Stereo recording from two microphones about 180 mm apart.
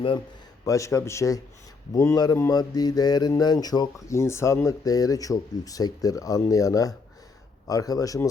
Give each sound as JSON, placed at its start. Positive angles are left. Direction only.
{"t": 0.6, "sound": "a man's voice", "side_deg": 20}